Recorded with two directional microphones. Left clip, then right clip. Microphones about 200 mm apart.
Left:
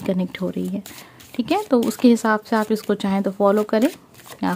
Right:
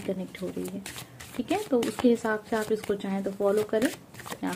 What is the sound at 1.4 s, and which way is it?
A woman's voice, 40° left (ahead or behind).